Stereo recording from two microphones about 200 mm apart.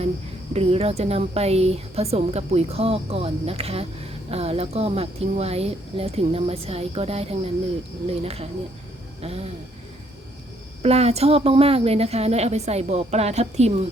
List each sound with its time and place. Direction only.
0.5 s a woman's voice: 30° right (ahead or behind)
10.8 s a woman's voice: 30° right (ahead or behind)